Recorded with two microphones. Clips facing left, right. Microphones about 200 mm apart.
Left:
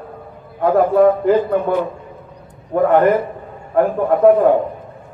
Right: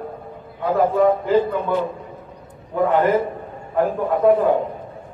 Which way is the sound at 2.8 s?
55° left (ahead or behind).